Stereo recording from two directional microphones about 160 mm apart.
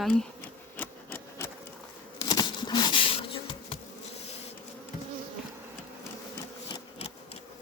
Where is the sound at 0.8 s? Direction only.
15° left (ahead or behind).